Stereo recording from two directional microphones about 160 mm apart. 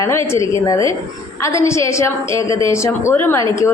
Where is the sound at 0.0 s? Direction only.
20° left (ahead or behind).